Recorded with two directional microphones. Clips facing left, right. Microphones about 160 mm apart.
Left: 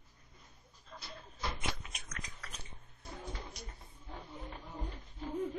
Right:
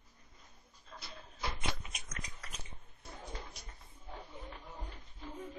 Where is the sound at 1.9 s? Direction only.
15° right (ahead or behind).